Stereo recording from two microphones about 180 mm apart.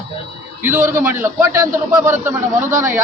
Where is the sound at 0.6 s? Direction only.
10° right (ahead or behind).